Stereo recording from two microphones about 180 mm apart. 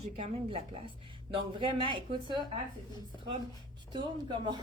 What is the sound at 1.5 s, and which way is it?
Speech, 30° right (ahead or behind).